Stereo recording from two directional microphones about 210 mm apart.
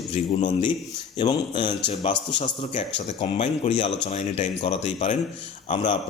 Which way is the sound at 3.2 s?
30° left (ahead or behind).